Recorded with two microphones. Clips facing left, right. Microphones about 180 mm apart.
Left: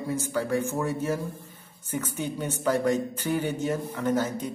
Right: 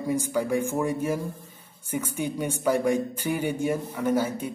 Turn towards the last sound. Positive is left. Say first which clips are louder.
# right 1 dB
turn(degrees=-10)  # may be behind; listen again after turning